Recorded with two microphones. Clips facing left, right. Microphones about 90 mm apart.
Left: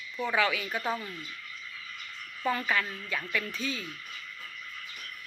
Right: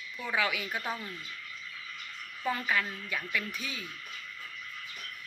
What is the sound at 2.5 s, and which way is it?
A woman's voice, 5° right (ahead or behind).